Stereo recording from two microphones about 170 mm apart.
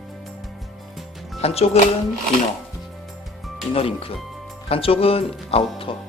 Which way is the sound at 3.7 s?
35° left (ahead or behind).